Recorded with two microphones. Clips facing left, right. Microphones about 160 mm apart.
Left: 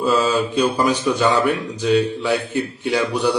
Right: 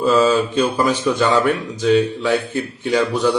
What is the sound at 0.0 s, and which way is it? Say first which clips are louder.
Speech: right 3 dB; 10° left (ahead or behind).